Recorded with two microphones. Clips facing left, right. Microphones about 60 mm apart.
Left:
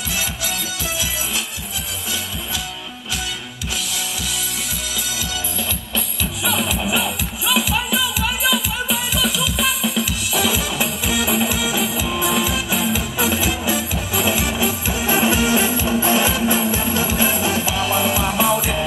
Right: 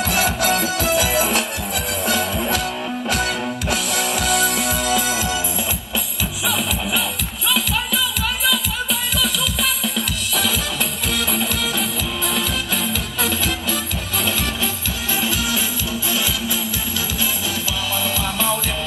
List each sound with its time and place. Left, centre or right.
0.1 s music: right
4.3 s music: right
6.4 s music: centre
9.2 s music: centre
15.0 s music: left